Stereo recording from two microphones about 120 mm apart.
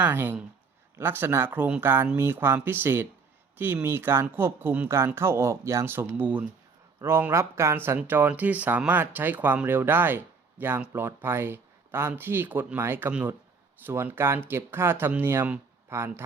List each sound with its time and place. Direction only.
0.0 s speech: 15° right (ahead or behind)